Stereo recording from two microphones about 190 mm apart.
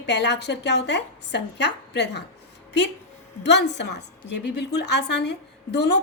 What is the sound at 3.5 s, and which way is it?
A woman's voice, 65° left (ahead or behind).